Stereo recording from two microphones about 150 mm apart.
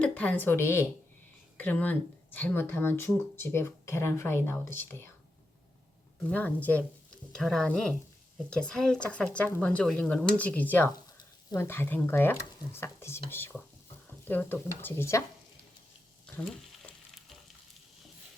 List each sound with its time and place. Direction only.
0.0 s a woman's voice: 10° left (ahead or behind)
6.2 s speech: 10° left (ahead or behind)